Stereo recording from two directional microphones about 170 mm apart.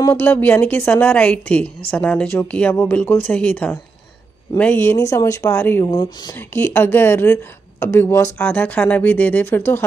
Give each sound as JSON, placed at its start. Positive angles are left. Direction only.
{"t": 0.1, "sound": "speech", "side_deg": 10}
{"t": 5.9, "sound": "speech", "side_deg": 25}
{"t": 6.3, "sound": "speech", "side_deg": 10}